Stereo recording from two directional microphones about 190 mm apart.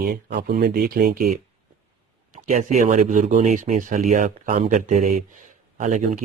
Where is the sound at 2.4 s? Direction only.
40° right (ahead or behind).